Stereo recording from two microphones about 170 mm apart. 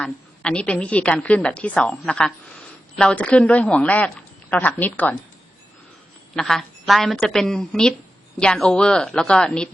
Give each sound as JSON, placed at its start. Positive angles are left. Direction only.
{"t": 0.0, "sound": "a woman's voice", "side_deg": 5}
{"t": 6.3, "sound": "a woman's voice", "side_deg": 0}